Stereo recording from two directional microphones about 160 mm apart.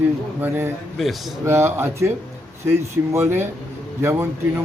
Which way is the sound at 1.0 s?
Centre (ahead or behind).